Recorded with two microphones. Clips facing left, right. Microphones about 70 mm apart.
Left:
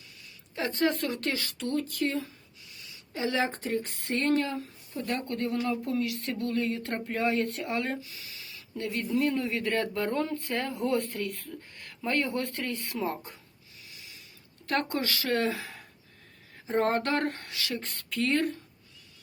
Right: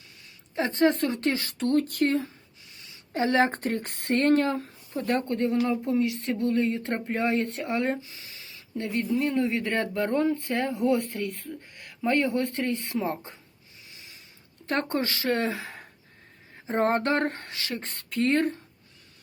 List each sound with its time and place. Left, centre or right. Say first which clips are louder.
0.5 s speech: right 5 dB; right
1.6 s speech: right 6 dB; right
2.7 s a sound: even; right
3.1 s speech: right 6 dB; right
4.9 s speech: right 5 dB; right
14.7 s speech: right 2 dB; right
16.6 s a sound: right 2 dB; right